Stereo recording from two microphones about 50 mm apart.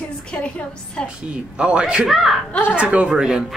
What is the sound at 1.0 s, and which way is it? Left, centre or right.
Speech, right.